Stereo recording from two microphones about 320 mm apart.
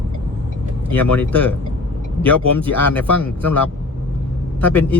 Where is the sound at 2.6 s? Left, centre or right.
Centre.